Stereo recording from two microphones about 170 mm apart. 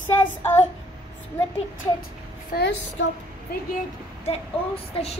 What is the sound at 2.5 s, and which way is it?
Speech, 60° left (ahead or behind).